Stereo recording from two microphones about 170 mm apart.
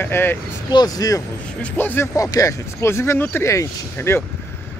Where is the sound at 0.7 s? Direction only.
25° left (ahead or behind).